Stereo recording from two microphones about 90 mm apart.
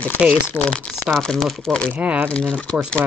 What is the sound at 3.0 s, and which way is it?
Speech, 20° right (ahead or behind).